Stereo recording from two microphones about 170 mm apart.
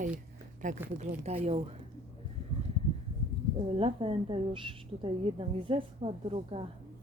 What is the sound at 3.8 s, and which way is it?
Speech, 35° right (ahead or behind).